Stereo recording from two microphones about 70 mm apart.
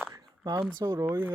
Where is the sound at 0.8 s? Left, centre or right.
Right.